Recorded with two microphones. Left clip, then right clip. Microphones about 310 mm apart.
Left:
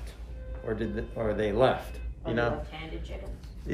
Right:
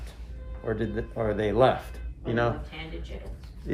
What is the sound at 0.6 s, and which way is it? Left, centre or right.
Speech, centre.